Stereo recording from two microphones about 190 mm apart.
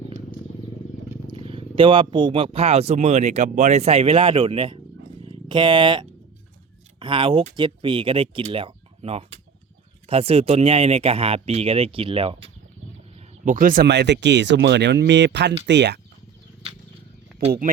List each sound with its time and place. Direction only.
1.3 s speech: 30° right (ahead or behind)
13.4 s speech: 45° right (ahead or behind); by 16.0 s 65° right (ahead or behind)